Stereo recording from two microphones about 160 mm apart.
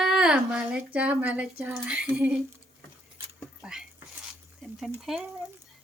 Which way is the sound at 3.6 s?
5° right (ahead or behind).